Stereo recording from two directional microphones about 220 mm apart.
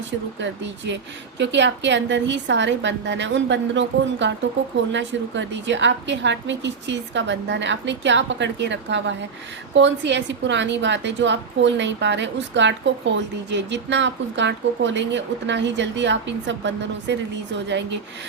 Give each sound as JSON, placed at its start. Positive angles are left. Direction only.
{"t": 0.3, "sound": "a woman's voice", "side_deg": -55}